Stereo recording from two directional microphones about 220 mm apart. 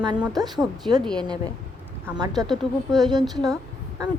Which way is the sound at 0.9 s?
15° right (ahead or behind).